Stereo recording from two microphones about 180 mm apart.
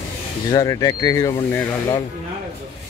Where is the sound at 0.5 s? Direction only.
20° left (ahead or behind).